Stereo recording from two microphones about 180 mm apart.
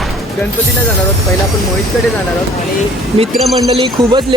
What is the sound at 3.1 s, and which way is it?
Speech, 35° right (ahead or behind).